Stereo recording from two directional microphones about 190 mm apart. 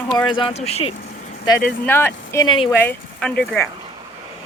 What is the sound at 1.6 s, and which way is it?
Speech, 5° left (ahead or behind).